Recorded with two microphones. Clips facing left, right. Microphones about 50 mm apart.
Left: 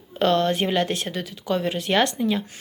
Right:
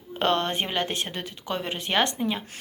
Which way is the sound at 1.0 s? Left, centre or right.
Right.